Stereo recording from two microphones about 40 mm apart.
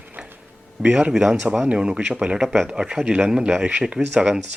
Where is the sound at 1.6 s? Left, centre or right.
Right.